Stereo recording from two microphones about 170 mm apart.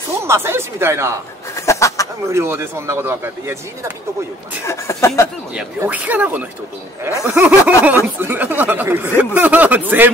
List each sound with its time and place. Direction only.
0.2 s speech: 15° right (ahead or behind)
1.7 s a sound: 15° left (ahead or behind)
2.3 s speech: 15° right (ahead or behind)
4.6 s speech: 15° left (ahead or behind)
5.8 s speech: 10° right (ahead or behind)